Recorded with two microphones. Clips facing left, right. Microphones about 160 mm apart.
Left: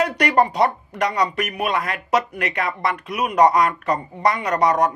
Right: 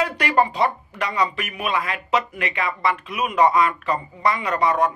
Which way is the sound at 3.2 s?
40° left (ahead or behind).